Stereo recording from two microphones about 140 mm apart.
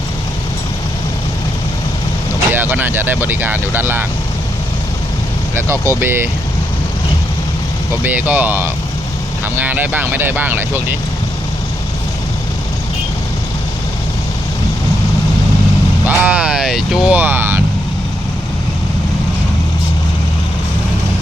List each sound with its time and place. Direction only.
2.5 s speech: 15° right (ahead or behind)
5.5 s speech: 20° right (ahead or behind)
8.0 s speech: 10° right (ahead or behind)
16.0 s speech: 10° right (ahead or behind)